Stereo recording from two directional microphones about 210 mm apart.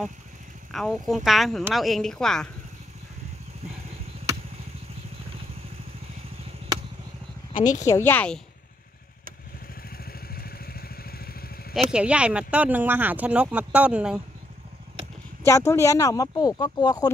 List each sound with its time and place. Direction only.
0.7 s speech: centre (ahead or behind)
7.7 s speech: 15° left (ahead or behind)
10.0 s vehicle: 45° left (ahead or behind)
11.9 s speech: 5° right (ahead or behind)
15.4 s speech: 15° left (ahead or behind)